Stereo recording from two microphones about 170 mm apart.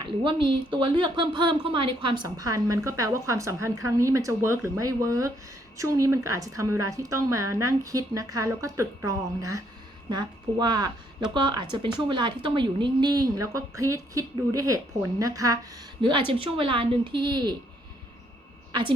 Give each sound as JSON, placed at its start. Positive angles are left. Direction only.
{"t": 0.0, "sound": "a woman's voice", "side_deg": -30}